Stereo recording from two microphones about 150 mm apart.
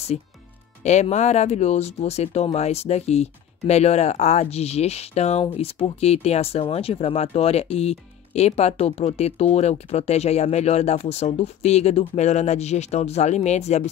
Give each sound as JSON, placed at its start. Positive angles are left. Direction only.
{"t": 0.8, "sound": "speech", "side_deg": 50}